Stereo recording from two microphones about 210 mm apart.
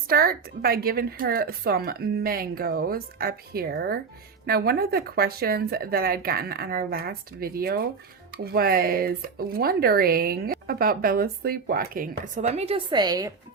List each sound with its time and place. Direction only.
0.1 s speech: 45° right (ahead or behind); by 13.3 s 20° right (ahead or behind)